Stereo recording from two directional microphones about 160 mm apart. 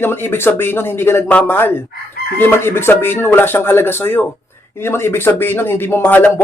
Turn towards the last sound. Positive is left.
turn(degrees=10)  # may be behind; listen again after turning